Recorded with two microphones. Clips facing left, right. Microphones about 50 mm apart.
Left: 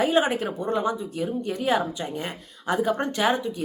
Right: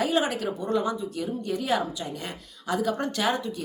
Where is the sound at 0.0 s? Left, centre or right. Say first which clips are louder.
Left 3 dB; left.